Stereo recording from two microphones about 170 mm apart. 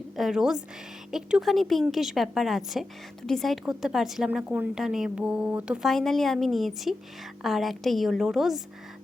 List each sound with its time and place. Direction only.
0.2 s a woman's voice: centre (ahead or behind)